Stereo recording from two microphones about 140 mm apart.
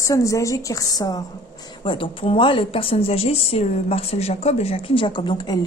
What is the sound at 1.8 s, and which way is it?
Speech, 35° left (ahead or behind).